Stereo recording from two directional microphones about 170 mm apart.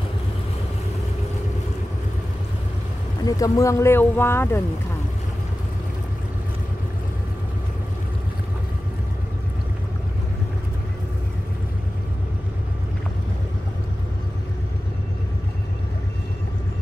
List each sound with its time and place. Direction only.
3.3 s speech: 20° left (ahead or behind)